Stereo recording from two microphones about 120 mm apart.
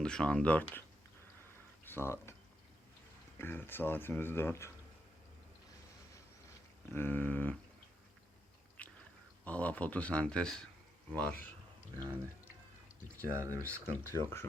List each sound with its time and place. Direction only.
0.0 s speech: 5° left (ahead or behind)
1.8 s speech: 20° left (ahead or behind)
3.3 s speech: 20° left (ahead or behind)
6.9 s speech: 15° left (ahead or behind)
8.8 s a sound: 10° left (ahead or behind)
9.4 s speech: 10° left (ahead or behind)
13.2 s speech: 25° right (ahead or behind)
13.9 s speech: 20° left (ahead or behind)